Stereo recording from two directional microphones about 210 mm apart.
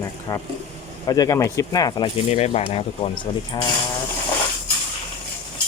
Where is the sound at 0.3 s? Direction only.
20° left (ahead or behind).